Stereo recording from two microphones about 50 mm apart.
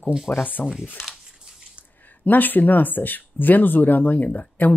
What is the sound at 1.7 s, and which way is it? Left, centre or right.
Speech, left.